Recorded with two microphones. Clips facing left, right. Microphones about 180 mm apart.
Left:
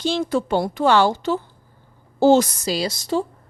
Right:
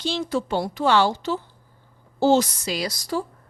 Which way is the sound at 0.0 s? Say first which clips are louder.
Left 4 dB; 50° left (ahead or behind).